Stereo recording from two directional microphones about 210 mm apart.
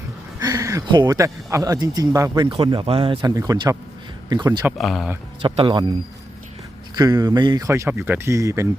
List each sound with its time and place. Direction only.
0.4 s speech: 15° right (ahead or behind)
4.6 s speech: centre (ahead or behind)
5.4 s speech: 25° right (ahead or behind)
6.9 s speech: 20° right (ahead or behind)